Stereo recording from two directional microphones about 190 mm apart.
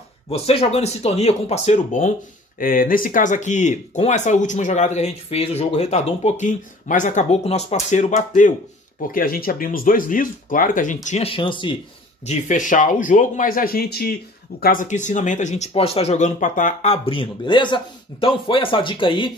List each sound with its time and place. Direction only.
0.3 s speech: 30° left (ahead or behind)
11.1 s speech: 30° left (ahead or behind)
12.3 s speech: 40° left (ahead or behind); by 19.3 s 25° left (ahead or behind)